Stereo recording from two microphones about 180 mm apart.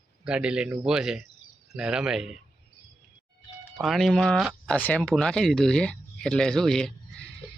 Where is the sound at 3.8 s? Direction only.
Centre (ahead or behind).